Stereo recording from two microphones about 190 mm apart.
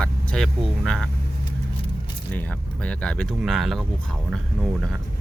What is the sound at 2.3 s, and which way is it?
Speech, 10° left (ahead or behind).